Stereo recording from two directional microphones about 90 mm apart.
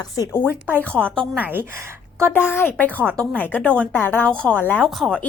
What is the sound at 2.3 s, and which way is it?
A woman's voice, 25° left (ahead or behind).